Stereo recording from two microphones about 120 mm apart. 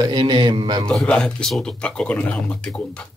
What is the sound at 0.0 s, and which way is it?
Speech, 35° right (ahead or behind).